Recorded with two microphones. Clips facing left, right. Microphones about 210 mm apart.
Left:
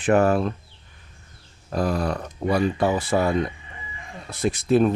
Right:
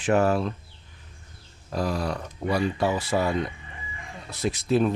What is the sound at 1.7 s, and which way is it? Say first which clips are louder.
Speech: left 3 dB; 55° left (ahead or behind).